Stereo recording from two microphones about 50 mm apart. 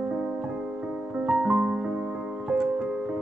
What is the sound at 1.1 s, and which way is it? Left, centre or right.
Piano, centre.